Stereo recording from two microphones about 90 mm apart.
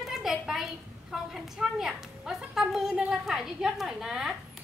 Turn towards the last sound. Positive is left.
turn(degrees=-5)  # may be behind; listen again after turning